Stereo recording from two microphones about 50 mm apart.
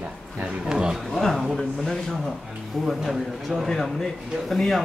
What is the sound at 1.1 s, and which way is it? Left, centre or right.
Speech, centre.